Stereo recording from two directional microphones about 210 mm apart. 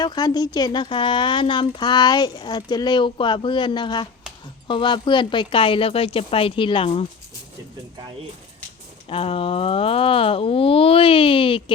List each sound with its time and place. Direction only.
0.0 s speech: 20° left (ahead or behind)
9.0 s speech: 25° left (ahead or behind)